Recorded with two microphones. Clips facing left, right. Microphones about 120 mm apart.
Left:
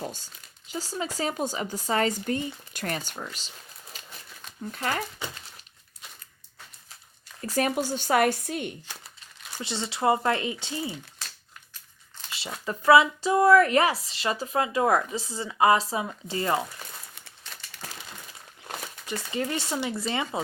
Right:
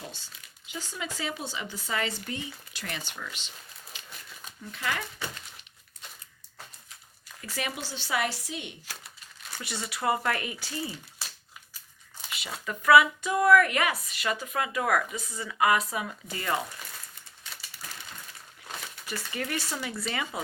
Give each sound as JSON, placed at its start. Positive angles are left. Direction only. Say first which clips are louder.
{"t": 0.0, "sound": "a sound", "louder": "left 8 dB", "side_deg": 45}
{"t": 0.7, "sound": "speech", "louder": "left 5 dB", "side_deg": 35}
{"t": 3.9, "sound": "a sound", "louder": "left 2 dB", "side_deg": 40}
{"t": 4.7, "sound": "speech", "louder": "left 3 dB", "side_deg": 40}
{"t": 7.4, "sound": "speech", "louder": "left 9 dB", "side_deg": 45}
{"t": 9.6, "sound": "speech", "louder": "left 5 dB", "side_deg": 25}
{"t": 12.6, "sound": "speech", "louder": "left 2 dB", "side_deg": 30}
{"t": 19.0, "sound": "speech", "louder": "left 5 dB", "side_deg": 25}